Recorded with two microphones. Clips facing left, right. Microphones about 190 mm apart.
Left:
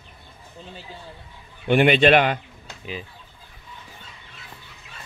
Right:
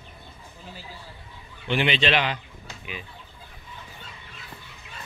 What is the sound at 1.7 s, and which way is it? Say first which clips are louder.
Speech: left 8 dB; 50° left (ahead or behind).